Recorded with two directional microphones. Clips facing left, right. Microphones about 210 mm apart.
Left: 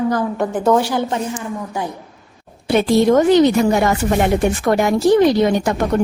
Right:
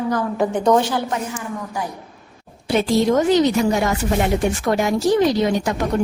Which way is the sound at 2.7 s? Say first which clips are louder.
Left 4 dB; 60° left (ahead or behind).